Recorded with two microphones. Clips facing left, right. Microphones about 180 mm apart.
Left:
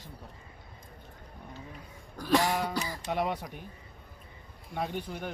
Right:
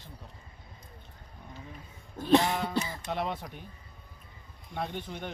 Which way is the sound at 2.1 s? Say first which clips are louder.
Right 3 dB; 20° right (ahead or behind).